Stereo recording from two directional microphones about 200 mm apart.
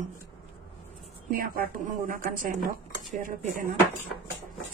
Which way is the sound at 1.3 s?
45° right (ahead or behind).